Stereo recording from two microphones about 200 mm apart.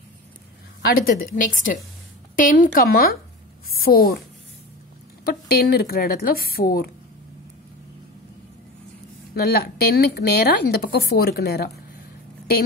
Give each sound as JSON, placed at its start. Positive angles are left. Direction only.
{"t": 0.8, "sound": "a woman's voice", "side_deg": 45}
{"t": 5.2, "sound": "speech", "side_deg": 50}
{"t": 9.3, "sound": "speech", "side_deg": 50}